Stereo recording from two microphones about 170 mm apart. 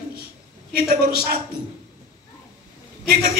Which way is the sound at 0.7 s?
70° right (ahead or behind).